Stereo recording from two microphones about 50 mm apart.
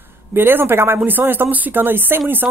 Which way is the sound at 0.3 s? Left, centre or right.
Right.